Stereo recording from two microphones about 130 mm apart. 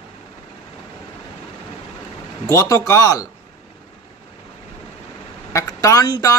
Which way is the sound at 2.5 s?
25° left (ahead or behind).